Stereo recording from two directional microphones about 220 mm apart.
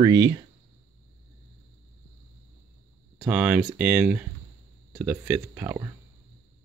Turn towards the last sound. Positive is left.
turn(degrees=-10)  # may be behind; listen again after turning